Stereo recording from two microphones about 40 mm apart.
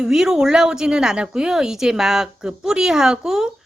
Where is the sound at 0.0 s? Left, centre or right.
Centre.